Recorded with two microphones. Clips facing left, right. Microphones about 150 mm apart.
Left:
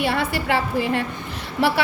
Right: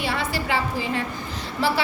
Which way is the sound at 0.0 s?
60° left (ahead or behind).